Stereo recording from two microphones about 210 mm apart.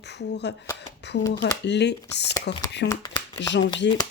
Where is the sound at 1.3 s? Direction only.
55° left (ahead or behind).